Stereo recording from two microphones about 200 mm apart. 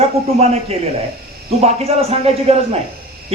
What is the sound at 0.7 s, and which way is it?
A man's voice, 30° right (ahead or behind).